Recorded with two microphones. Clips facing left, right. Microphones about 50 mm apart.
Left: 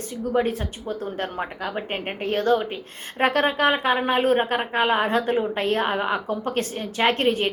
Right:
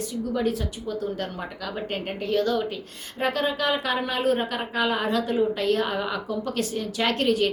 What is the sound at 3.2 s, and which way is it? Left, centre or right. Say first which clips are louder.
A woman's voice: left 5 dB; left.